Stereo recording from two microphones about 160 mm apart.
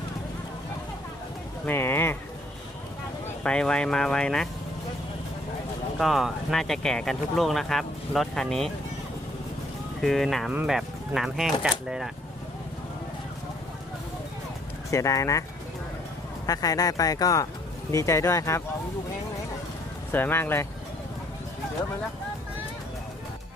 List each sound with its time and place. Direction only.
1.6 s speech: 15° left (ahead or behind)
3.4 s speech: 5° left (ahead or behind)
6.0 s speech: centre (ahead or behind)
10.0 s speech: centre (ahead or behind)
14.8 s speech: 20° left (ahead or behind)
16.5 s speech: 25° left (ahead or behind)
20.1 s speech: 15° left (ahead or behind)